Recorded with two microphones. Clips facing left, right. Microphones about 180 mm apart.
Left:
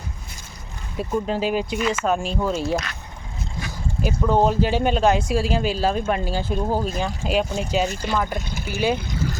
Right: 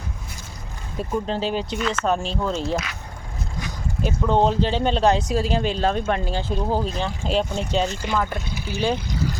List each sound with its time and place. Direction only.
0.9 s speech: 10° left (ahead or behind)
4.0 s speech: 5° left (ahead or behind)
9.0 s speech: 50° left (ahead or behind)